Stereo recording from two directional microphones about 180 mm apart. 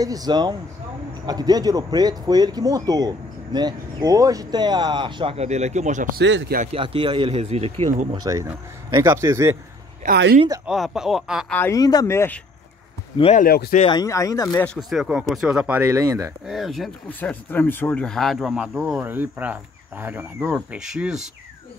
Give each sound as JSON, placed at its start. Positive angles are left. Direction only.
{"t": 0.0, "sound": "speech", "side_deg": -20}
{"t": 6.1, "sound": "speech", "side_deg": -85}
{"t": 6.7, "sound": "speech", "side_deg": -30}
{"t": 8.2, "sound": "a man's voice", "side_deg": -20}
{"t": 10.0, "sound": "speech", "side_deg": -65}
{"t": 10.7, "sound": "speech", "side_deg": -5}
{"t": 11.5, "sound": "speech", "side_deg": 15}
{"t": 13.2, "sound": "speech", "side_deg": 40}
{"t": 13.5, "sound": "speech", "side_deg": 55}
{"t": 13.8, "sound": "speech", "side_deg": 20}
{"t": 16.4, "sound": "speech", "side_deg": 0}